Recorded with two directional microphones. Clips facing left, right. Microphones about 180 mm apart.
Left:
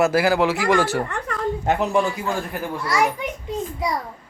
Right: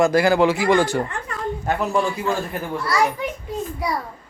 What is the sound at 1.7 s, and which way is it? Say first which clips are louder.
A man's voice: left 1 dB; 20° left (ahead or behind).